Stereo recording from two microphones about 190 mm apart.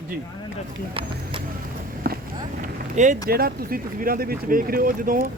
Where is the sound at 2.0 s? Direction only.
50° right (ahead or behind).